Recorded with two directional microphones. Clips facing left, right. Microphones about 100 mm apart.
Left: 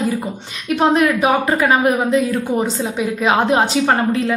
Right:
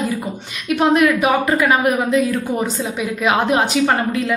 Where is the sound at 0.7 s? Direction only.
30° left (ahead or behind).